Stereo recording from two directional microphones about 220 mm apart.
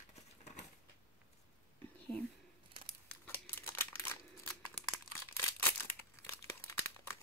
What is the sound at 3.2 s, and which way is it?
Crumpling, 10° left (ahead or behind).